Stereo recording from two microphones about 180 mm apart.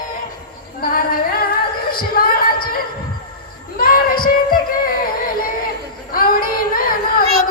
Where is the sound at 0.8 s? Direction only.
55° left (ahead or behind).